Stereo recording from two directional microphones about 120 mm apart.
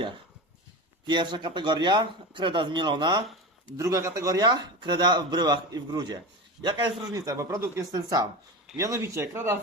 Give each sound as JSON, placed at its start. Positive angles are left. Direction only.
{"t": 1.0, "sound": "speech", "side_deg": -40}
{"t": 3.8, "sound": "speech", "side_deg": -30}